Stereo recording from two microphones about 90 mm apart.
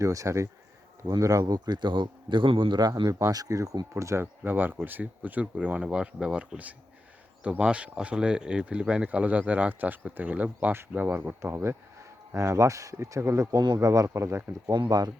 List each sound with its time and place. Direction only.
0.0 s a man's voice: 35° right (ahead or behind)
14.8 s speech: 45° right (ahead or behind)